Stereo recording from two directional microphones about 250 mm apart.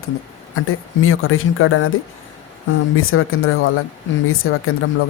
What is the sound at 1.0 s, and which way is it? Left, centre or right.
Speech, left.